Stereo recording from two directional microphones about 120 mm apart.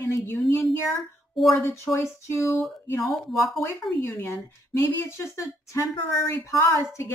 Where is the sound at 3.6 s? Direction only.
20° left (ahead or behind).